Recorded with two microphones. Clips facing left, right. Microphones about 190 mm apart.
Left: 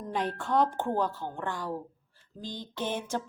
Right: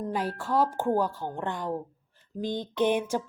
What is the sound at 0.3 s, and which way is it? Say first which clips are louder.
A woman's voice: even; 5° right (ahead or behind).